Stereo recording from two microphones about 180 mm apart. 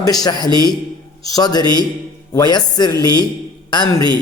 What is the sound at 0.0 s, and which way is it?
A man's voice, 20° left (ahead or behind).